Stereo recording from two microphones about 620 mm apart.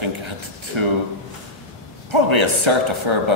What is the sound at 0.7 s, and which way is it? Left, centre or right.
Speech, right.